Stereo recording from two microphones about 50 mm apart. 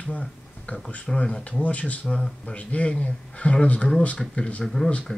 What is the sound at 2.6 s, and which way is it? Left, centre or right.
Speech, left.